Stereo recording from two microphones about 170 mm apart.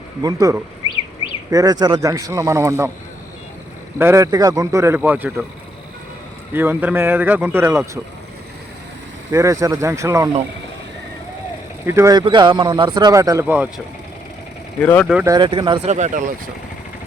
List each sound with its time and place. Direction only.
0.2 s speech: 20° right (ahead or behind)
3.9 s speech: 15° right (ahead or behind)
6.5 s speech: 10° right (ahead or behind)
9.3 s speech: 20° right (ahead or behind)
11.9 s speech: 15° right (ahead or behind)
12.2 s speech: 25° right (ahead or behind); by 13.8 s 10° right (ahead or behind)
14.8 s speech: 10° left (ahead or behind)
15.2 s speech: 25° right (ahead or behind)
15.9 s speech: 45° right (ahead or behind)